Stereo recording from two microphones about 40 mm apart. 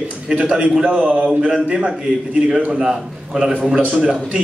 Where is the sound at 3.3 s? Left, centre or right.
Centre.